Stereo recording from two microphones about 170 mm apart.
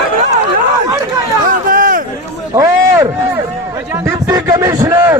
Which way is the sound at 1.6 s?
50° right (ahead or behind).